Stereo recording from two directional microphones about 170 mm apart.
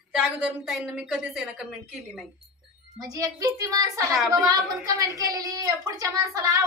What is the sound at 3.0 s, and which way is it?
A woman's voice, 20° right (ahead or behind).